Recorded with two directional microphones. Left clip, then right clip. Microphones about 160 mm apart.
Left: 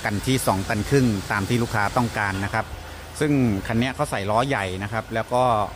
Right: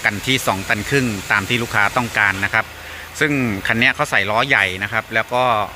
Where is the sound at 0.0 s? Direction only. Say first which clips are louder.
Right 6 dB; 10° left (ahead or behind).